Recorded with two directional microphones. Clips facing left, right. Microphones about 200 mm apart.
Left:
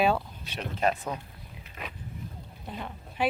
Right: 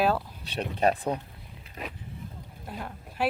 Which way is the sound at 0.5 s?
35° right (ahead or behind).